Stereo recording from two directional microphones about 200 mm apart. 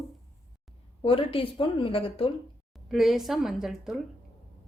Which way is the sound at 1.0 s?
30° left (ahead or behind).